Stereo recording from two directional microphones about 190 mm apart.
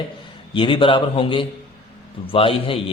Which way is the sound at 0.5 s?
25° left (ahead or behind).